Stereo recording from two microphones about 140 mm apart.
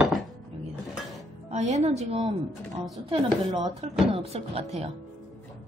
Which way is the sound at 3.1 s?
30° right (ahead or behind).